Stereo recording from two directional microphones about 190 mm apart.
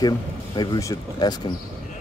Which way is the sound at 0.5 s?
20° left (ahead or behind).